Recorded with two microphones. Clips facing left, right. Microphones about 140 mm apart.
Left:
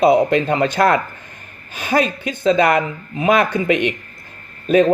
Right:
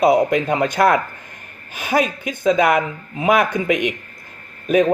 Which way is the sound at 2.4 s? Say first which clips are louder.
Left 1 dB; 10° right (ahead or behind).